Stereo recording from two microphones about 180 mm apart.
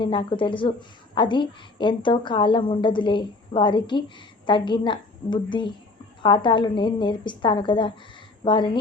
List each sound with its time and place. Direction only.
0.0 s a woman's voice: 25° left (ahead or behind)